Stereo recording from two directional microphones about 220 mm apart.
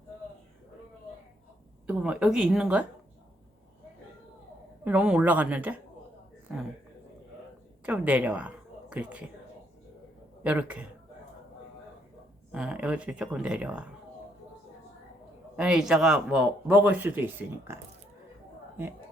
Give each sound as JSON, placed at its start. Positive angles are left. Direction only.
{"t": 1.9, "sound": "speech", "side_deg": -5}
{"t": 4.9, "sound": "a woman's voice", "side_deg": -5}
{"t": 7.9, "sound": "a woman's voice", "side_deg": -5}
{"t": 10.4, "sound": "speech", "side_deg": -5}
{"t": 12.5, "sound": "speech", "side_deg": -5}
{"t": 15.5, "sound": "speech", "side_deg": -5}